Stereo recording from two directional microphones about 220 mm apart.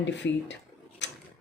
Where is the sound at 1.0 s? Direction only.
55° left (ahead or behind).